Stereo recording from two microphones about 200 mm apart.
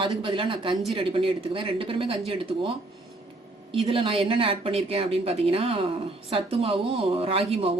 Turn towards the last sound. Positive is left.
turn(degrees=-30)  # may be behind; listen again after turning